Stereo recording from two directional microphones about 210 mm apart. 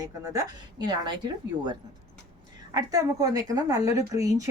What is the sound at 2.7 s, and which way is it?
Speech, 15° right (ahead or behind).